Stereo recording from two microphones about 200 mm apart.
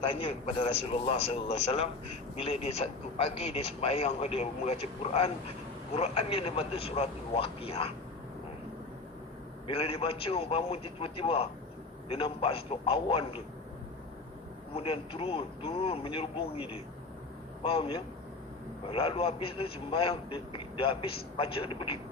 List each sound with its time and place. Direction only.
0.0 s a man's voice: 25° left (ahead or behind)
9.6 s a man's voice: 30° left (ahead or behind)
14.7 s a man's voice: 30° left (ahead or behind)